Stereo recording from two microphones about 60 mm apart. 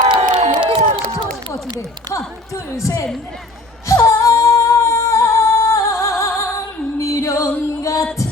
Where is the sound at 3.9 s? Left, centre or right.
Left.